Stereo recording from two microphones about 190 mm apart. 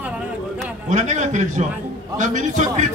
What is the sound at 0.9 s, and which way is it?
A man's voice, 40° right (ahead or behind).